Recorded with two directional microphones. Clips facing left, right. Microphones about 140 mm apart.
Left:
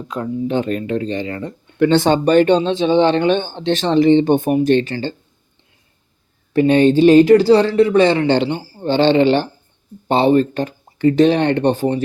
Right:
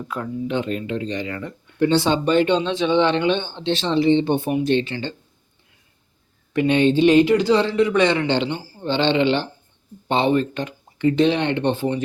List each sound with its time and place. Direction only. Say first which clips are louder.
0.0 s speech: left 4 dB; 20° left (ahead or behind)
0.4 s speech: left 4 dB; 40° left (ahead or behind)
1.1 s speech: left 4 dB; 30° left (ahead or behind)
1.8 s speech: left 5 dB; 55° left (ahead or behind)
6.5 s speech: left 5 dB; 35° left (ahead or behind)